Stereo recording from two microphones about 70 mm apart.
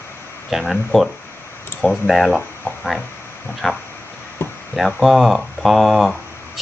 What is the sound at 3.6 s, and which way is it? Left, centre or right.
Speech, centre.